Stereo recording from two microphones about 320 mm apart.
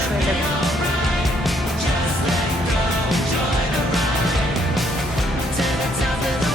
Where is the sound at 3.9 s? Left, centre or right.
Centre.